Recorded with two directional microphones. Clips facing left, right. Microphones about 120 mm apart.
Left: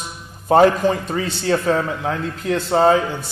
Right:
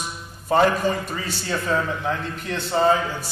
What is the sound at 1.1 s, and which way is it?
Speech, 65° left (ahead or behind).